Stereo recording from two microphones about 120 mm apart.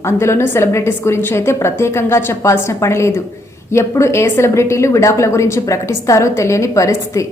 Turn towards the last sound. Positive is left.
turn(degrees=25)  # may be behind; listen again after turning